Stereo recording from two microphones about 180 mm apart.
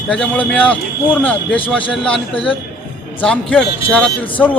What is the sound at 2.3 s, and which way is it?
Speech, 30° left (ahead or behind).